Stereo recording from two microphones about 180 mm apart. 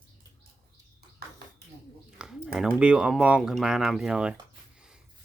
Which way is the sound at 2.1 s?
5° right (ahead or behind).